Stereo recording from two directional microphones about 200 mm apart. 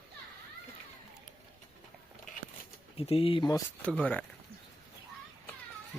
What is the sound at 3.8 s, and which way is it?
Speech, 5° left (ahead or behind).